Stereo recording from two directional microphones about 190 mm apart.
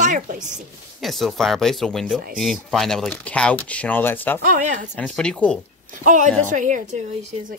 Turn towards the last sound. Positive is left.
turn(degrees=-40)  # may be behind; listen again after turning